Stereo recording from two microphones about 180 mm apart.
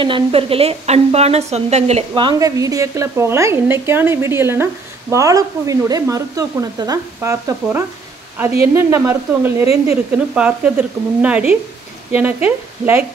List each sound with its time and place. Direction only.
0.0 s speech: 30° right (ahead or behind); by 13.0 s 10° right (ahead or behind)